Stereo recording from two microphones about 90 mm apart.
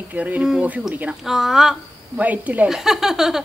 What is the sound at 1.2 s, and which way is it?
Speech, 5° right (ahead or behind).